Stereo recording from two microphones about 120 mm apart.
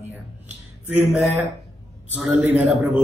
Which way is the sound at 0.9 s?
15° right (ahead or behind).